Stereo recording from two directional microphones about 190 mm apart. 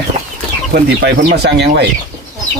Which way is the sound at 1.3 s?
60° right (ahead or behind).